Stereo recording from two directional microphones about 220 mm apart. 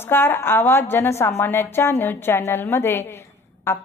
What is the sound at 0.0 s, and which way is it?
A woman's voice, 10° left (ahead or behind).